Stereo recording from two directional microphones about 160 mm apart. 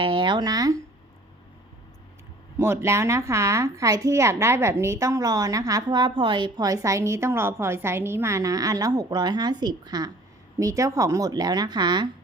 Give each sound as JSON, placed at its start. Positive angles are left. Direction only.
{"t": 0.0, "sound": "speech", "side_deg": -30}
{"t": 2.6, "sound": "speech", "side_deg": -15}